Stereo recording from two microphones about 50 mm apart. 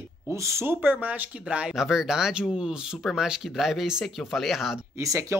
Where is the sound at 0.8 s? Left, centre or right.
Right.